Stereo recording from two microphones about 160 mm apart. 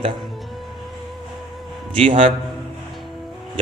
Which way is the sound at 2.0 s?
40° right (ahead or behind).